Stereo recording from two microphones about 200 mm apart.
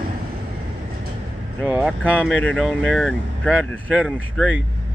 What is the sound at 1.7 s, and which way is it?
Speech, 10° right (ahead or behind).